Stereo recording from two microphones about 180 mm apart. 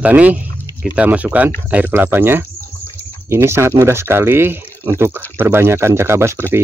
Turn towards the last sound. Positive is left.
turn(degrees=-15)  # may be behind; listen again after turning